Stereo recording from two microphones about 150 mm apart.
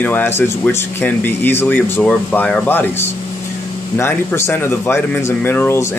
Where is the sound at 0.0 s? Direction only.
10° left (ahead or behind).